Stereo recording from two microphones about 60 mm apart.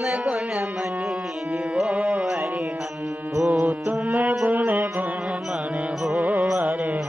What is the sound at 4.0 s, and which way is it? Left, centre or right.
Music, right.